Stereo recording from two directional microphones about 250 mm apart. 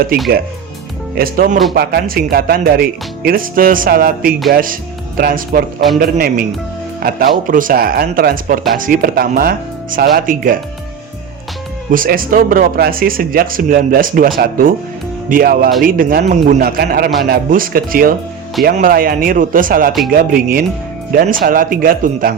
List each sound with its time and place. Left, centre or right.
1.1 s speech: right
11.9 s speech: right